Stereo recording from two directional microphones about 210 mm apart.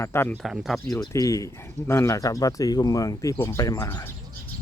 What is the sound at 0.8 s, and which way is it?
Speech, 15° left (ahead or behind).